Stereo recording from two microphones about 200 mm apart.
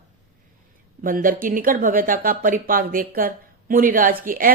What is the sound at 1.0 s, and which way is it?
Speech, 45° right (ahead or behind).